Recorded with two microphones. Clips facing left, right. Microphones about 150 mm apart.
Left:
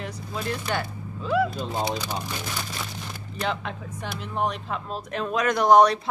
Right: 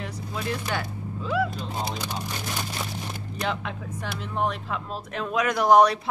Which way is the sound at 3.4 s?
Centre (ahead or behind).